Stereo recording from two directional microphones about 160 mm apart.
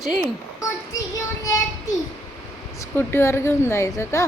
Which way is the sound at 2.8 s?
15° left (ahead or behind).